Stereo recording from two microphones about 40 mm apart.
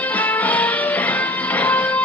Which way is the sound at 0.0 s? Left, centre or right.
Left.